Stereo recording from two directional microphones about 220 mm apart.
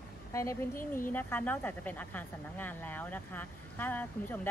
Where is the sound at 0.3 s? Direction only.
15° left (ahead or behind).